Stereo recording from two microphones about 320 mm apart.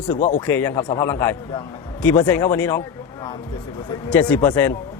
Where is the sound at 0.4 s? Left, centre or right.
Centre.